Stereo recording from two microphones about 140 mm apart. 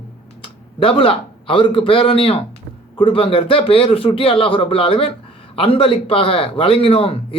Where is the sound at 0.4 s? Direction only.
40° left (ahead or behind).